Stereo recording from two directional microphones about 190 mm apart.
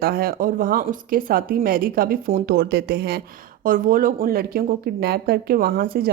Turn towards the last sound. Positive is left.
turn(degrees=-50)  # may be behind; listen again after turning